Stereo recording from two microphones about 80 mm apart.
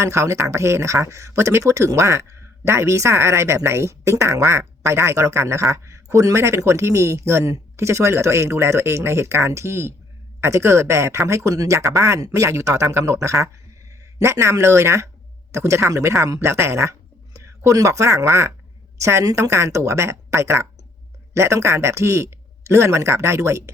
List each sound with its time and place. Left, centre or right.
0.0 s speech: right